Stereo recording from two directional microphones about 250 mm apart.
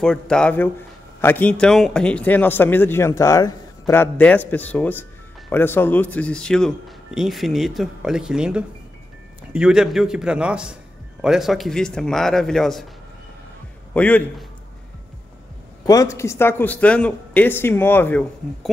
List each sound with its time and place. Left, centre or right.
0.0 s a man's voice: centre
13.9 s a man's voice: centre
15.8 s a man's voice: centre